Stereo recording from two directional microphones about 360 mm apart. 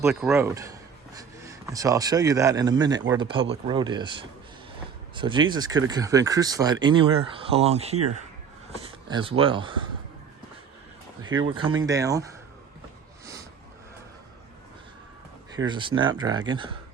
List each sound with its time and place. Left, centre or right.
0.0 s speech: centre
8.7 s a sound: centre
9.4 s speech: centre
11.8 s speech: centre
15.5 s speech: centre